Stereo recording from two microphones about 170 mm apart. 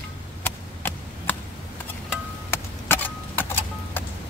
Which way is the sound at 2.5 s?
10° left (ahead or behind).